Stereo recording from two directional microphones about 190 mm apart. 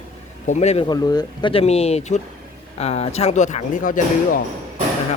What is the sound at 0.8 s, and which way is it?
Speech, 20° left (ahead or behind).